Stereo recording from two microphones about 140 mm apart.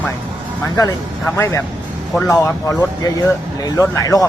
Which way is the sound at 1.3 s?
20° left (ahead or behind).